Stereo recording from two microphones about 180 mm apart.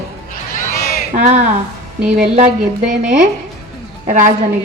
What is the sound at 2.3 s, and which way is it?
A woman's voice, 40° right (ahead or behind).